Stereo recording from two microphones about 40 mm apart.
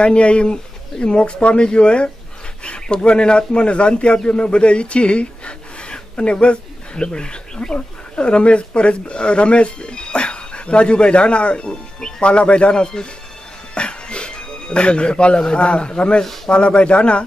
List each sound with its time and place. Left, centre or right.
0.0 s a man's voice: left